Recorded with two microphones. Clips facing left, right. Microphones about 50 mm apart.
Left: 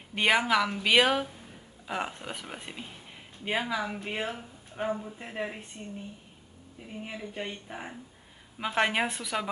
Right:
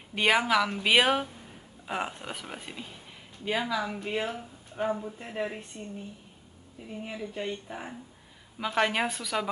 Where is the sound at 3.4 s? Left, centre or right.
Centre.